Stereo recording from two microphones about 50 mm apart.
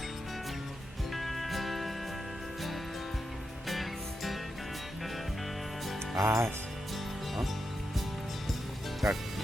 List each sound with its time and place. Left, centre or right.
1.1 s music: centre
3.7 s music: centre
6.1 s speech: right
9.0 s speech: centre